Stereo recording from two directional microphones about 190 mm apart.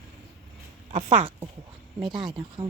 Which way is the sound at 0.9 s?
35° right (ahead or behind).